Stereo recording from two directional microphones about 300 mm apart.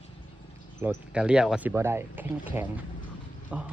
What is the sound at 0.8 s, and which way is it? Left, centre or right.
Speech, centre.